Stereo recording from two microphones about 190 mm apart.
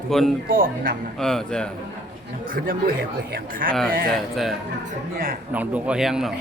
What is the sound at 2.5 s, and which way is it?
A man's voice, 50° right (ahead or behind).